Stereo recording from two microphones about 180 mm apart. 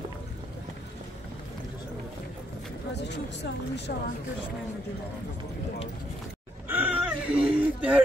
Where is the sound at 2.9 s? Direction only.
70° left (ahead or behind).